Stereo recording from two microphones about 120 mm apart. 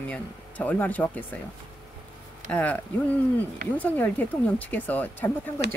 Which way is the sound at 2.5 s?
10° left (ahead or behind).